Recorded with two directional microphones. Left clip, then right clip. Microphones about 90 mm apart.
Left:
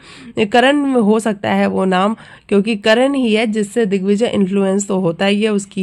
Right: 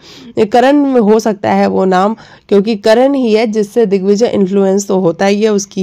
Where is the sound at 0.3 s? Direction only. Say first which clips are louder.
Right 4 dB; 25° right (ahead or behind).